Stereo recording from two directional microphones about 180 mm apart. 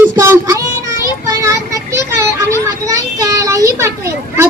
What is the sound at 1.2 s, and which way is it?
Vehicle, 20° right (ahead or behind).